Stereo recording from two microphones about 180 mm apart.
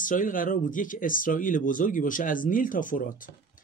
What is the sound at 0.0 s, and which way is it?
Speech, 45° left (ahead or behind).